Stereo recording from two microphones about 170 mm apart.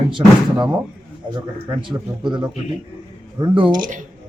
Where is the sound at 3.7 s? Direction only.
50° right (ahead or behind).